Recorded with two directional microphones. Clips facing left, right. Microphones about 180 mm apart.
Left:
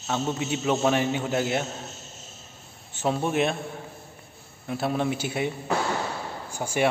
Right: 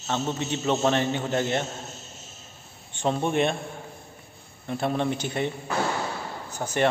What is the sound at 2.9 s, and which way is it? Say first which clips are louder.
Speech: even; 5° left (ahead or behind).